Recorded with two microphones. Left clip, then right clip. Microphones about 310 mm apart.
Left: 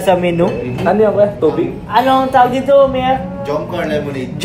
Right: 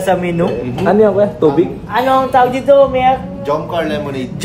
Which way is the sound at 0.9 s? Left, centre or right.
Right.